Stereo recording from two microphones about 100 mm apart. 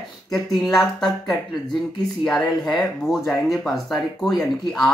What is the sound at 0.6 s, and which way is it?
Speech, centre (ahead or behind).